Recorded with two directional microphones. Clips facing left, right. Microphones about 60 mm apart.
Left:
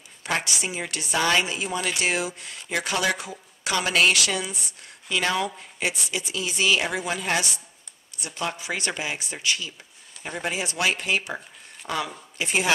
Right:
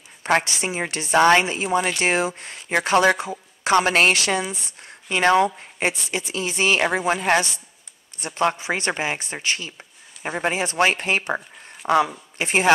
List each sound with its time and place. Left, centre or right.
0.2 s speech: right